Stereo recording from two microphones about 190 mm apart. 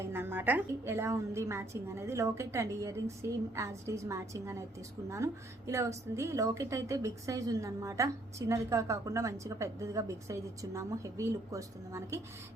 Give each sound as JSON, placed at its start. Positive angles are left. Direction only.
{"t": 0.0, "sound": "a woman's voice", "side_deg": -10}